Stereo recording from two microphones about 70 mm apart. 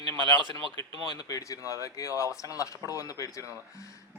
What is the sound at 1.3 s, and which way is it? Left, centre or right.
Speech, left.